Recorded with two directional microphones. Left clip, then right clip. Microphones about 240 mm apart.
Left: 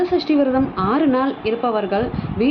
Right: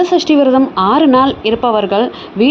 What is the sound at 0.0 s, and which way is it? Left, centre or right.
A woman's voice, right.